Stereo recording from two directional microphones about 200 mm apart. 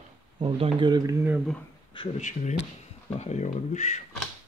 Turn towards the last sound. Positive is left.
turn(degrees=35)  # may be behind; listen again after turning